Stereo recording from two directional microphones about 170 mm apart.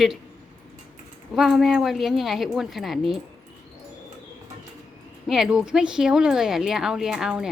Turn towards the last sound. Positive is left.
turn(degrees=-5)  # may be behind; listen again after turning